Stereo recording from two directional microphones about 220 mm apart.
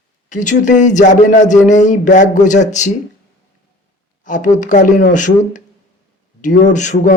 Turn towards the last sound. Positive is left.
turn(degrees=35)  # may be behind; listen again after turning